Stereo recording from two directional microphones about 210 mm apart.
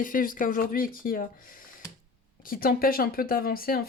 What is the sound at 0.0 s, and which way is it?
Speech, 40° left (ahead or behind).